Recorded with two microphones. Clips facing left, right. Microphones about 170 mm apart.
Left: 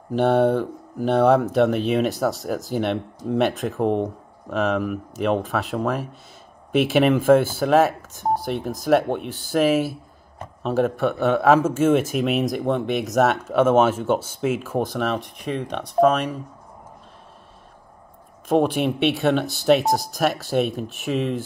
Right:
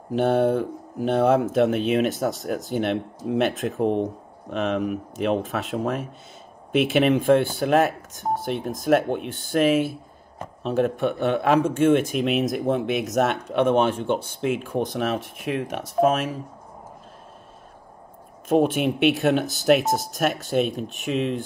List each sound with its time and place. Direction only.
0.1 s speech: centre (ahead or behind)
10.6 s a man's voice: 40° left (ahead or behind)
11.0 s speech: centre (ahead or behind)
18.5 s speech: centre (ahead or behind)